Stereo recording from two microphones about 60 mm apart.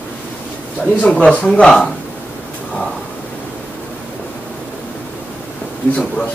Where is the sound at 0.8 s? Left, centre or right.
Left.